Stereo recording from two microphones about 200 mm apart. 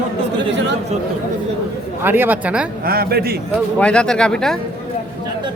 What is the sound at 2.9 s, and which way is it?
Speech, 50° right (ahead or behind).